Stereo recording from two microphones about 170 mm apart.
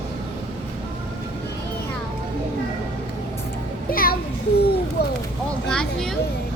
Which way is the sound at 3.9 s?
60° left (ahead or behind).